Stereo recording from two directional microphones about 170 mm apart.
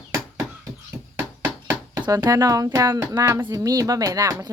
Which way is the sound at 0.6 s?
20° right (ahead or behind).